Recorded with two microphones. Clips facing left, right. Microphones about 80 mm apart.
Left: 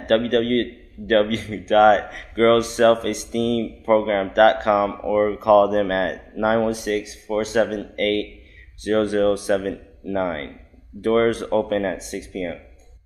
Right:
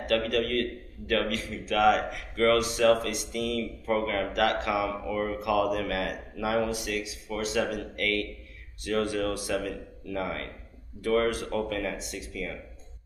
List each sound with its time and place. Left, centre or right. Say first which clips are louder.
0.1 s a man's voice: left 9 dB; left